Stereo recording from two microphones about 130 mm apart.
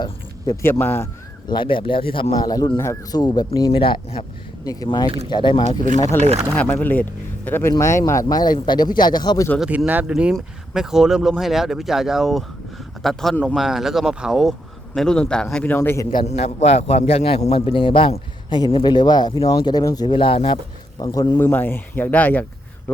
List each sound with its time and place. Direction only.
0.0 s a sound: 30° left (ahead or behind)
0.6 s speech: 15° left (ahead or behind)
1.5 s speech: 40° left (ahead or behind)
2.3 s speech: 30° left (ahead or behind)
3.7 s a man's voice: 40° left (ahead or behind)
4.6 s speech: 30° left (ahead or behind)
6.0 s speech: 20° left (ahead or behind)
6.2 s speech: 55° right (ahead or behind)
6.5 s speech: 15° left (ahead or behind); by 9.5 s 35° left (ahead or behind)
9.6 s speech: 10° right (ahead or behind); by 16.0 s 15° left (ahead or behind)
16.2 s a man's voice: 55° left (ahead or behind); by 20.1 s 30° left (ahead or behind)
20.1 s a man's voice: 45° left (ahead or behind)
21.0 s speech: 25° left (ahead or behind)